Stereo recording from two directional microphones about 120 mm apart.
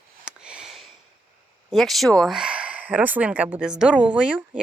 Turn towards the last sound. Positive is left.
turn(degrees=-10)  # may be behind; listen again after turning